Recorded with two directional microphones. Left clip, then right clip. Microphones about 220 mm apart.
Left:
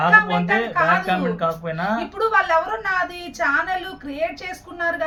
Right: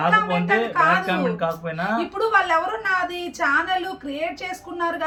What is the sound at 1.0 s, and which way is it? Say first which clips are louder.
Speech: left 1 dB; 15° left (ahead or behind).